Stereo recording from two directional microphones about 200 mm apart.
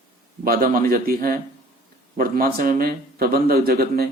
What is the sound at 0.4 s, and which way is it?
Speech, 45° right (ahead or behind).